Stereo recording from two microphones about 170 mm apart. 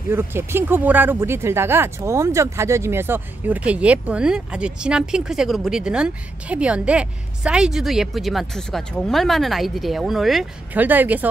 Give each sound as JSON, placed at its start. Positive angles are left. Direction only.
{"t": 0.1, "sound": "speech", "side_deg": -15}